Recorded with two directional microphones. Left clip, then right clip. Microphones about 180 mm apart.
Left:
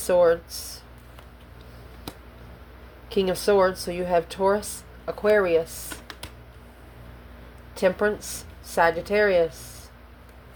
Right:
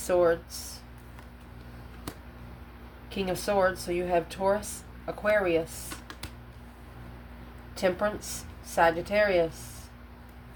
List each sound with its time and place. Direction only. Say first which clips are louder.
0.1 s speech: left 5 dB; 40° left (ahead or behind)
3.1 s speech: left 8 dB; 40° left (ahead or behind)
7.8 s speech: left 5 dB; 35° left (ahead or behind)